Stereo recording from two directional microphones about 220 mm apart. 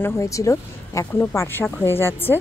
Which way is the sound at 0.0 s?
15° left (ahead or behind).